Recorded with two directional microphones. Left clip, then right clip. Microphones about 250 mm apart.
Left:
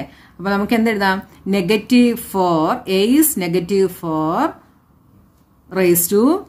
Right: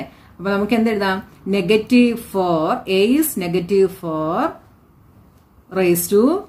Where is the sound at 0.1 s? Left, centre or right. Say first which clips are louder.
Left 1 dB; left.